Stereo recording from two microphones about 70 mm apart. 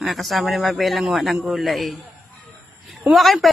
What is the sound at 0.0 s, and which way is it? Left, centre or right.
Speech, centre.